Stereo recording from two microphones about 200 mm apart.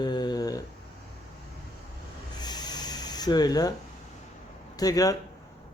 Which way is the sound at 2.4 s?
20° left (ahead or behind).